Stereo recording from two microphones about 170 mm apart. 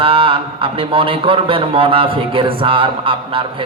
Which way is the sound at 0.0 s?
30° right (ahead or behind).